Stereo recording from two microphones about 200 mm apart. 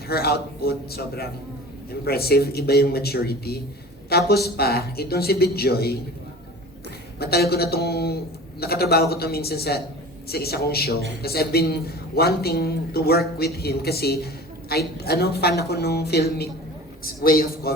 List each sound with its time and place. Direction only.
0.1 s a man's voice: 50° left (ahead or behind)
7.2 s a man's voice: 50° left (ahead or behind)